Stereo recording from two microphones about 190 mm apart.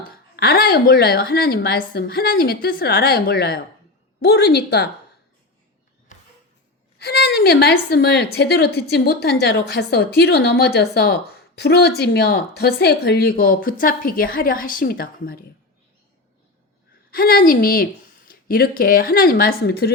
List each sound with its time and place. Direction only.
0.3 s a woman's voice: 55° left (ahead or behind)
6.1 s a sound: 40° left (ahead or behind)
7.0 s a woman's voice: 60° left (ahead or behind)
17.1 s a woman's voice: 50° left (ahead or behind)